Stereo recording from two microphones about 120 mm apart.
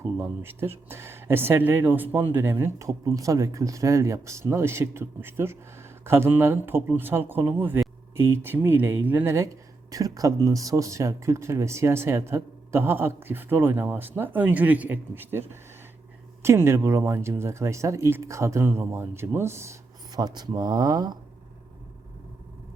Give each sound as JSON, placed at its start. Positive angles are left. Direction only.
{"t": 0.2, "sound": "speech", "side_deg": -20}
{"t": 20.1, "sound": "speech", "side_deg": -35}